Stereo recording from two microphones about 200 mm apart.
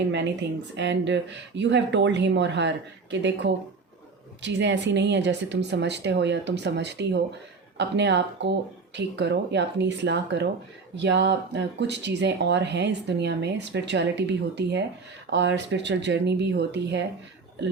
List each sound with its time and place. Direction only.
0.8 s speech: 60° right (ahead or behind)